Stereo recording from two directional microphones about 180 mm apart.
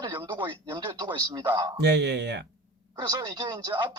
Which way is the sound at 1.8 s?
65° right (ahead or behind).